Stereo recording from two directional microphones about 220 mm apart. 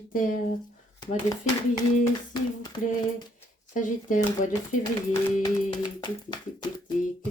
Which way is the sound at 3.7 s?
35° left (ahead or behind).